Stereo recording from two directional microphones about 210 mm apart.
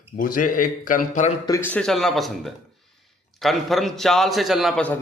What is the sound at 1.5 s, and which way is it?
Speech, 15° left (ahead or behind).